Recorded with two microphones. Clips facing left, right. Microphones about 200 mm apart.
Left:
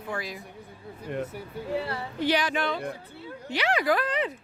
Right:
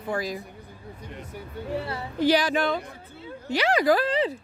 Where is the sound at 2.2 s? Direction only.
35° right (ahead or behind).